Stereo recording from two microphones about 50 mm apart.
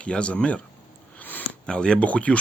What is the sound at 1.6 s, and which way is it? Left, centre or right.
Speech, centre.